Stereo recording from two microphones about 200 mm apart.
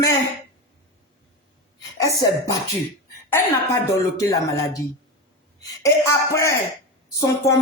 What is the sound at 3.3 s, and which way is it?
Speech, 15° left (ahead or behind).